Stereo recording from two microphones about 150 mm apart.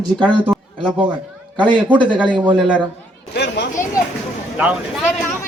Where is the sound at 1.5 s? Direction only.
30° right (ahead or behind).